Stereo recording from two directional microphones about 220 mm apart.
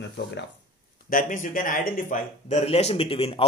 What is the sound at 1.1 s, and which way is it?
A man's voice, 40° left (ahead or behind).